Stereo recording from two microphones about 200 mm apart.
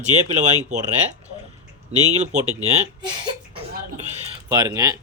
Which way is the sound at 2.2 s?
35° right (ahead or behind).